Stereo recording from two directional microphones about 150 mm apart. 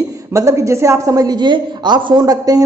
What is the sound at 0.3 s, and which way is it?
A woman's voice, 20° right (ahead or behind).